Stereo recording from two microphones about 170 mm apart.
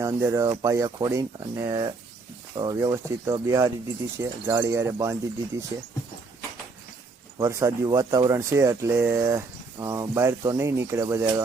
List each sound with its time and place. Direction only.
0.0 s speech: 15° right (ahead or behind)
7.3 s speech: 20° right (ahead or behind)